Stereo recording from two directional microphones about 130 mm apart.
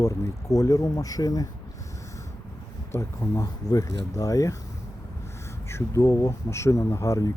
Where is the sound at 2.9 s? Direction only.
20° left (ahead or behind).